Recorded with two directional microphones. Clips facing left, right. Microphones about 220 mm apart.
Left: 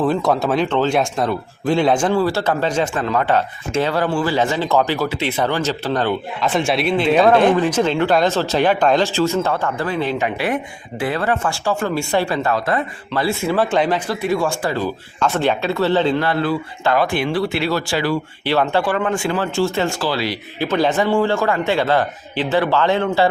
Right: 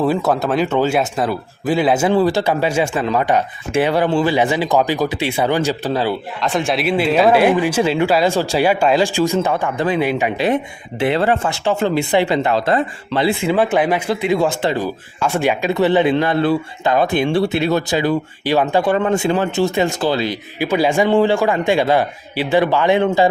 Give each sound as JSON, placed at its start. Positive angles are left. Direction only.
{"t": 0.0, "sound": "speech", "side_deg": -5}
{"t": 13.2, "sound": "speech", "side_deg": -15}